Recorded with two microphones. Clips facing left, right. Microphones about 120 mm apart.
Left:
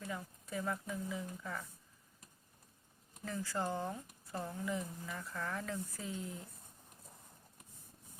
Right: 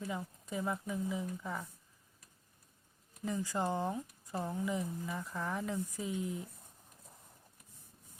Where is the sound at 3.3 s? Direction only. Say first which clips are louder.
Right 3 dB; 15° right (ahead or behind).